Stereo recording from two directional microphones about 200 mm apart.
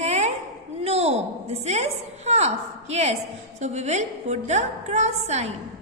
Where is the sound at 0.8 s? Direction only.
30° right (ahead or behind).